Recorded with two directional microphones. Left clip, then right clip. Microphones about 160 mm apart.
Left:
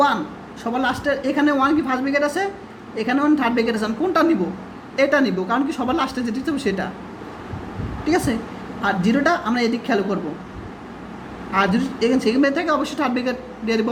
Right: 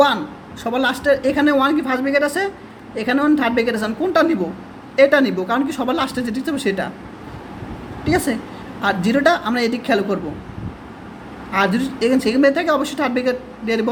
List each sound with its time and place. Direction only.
0.6 s a woman's voice: 25° right (ahead or behind)
8.0 s a woman's voice: 20° right (ahead or behind)
11.5 s a woman's voice: 25° right (ahead or behind)